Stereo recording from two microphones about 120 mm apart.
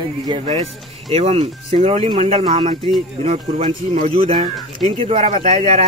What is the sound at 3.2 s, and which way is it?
Speech, 60° right (ahead or behind).